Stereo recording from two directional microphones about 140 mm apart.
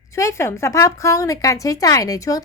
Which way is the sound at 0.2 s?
20° left (ahead or behind).